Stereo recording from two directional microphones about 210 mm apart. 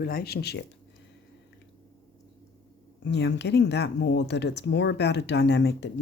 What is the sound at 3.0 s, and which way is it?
Speech, 55° left (ahead or behind).